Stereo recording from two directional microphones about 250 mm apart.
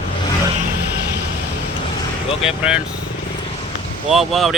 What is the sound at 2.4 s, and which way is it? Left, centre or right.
Speech, centre.